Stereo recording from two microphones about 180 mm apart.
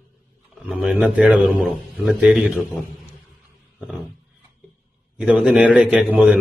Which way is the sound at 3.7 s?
5° right (ahead or behind).